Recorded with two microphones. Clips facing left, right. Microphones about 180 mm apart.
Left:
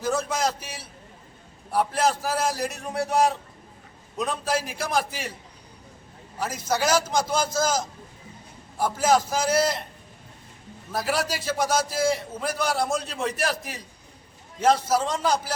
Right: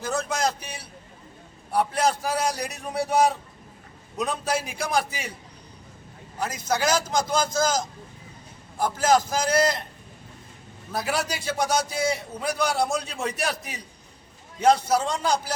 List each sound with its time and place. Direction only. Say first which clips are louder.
0.0 s a sound: left 1 dB; 5° left (ahead or behind)
1.7 s a man's voice: even; centre (ahead or behind)
6.4 s a man's voice: even; 5° left (ahead or behind)
10.9 s a man's voice: left 1 dB; centre (ahead or behind)